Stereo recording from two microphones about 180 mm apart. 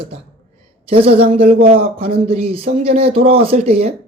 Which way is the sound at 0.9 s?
30° right (ahead or behind).